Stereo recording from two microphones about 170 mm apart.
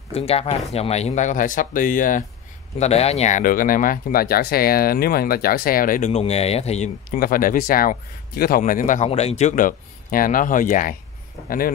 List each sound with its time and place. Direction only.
0.1 s speech: 35° left (ahead or behind); by 2.2 s 50° left (ahead or behind)
2.8 s speech: 40° left (ahead or behind)
7.1 s speech: 55° left (ahead or behind)